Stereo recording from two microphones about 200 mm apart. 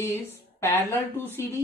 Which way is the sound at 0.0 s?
15° left (ahead or behind).